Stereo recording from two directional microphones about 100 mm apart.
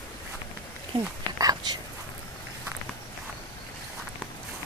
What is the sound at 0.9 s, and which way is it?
Speech, 40° right (ahead or behind).